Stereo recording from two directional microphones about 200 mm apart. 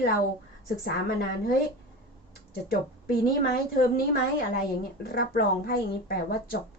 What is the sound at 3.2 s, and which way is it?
Speech, 45° left (ahead or behind).